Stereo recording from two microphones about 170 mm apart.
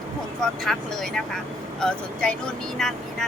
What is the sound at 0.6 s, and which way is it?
Speech, centre (ahead or behind).